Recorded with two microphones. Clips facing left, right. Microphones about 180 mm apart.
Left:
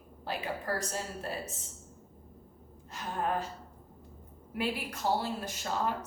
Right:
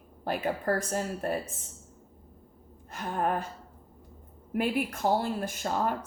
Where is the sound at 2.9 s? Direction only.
55° right (ahead or behind).